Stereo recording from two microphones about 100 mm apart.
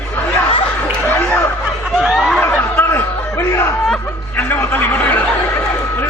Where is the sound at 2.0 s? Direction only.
Centre (ahead or behind).